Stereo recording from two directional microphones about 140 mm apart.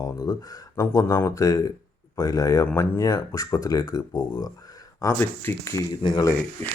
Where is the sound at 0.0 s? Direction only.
25° left (ahead or behind).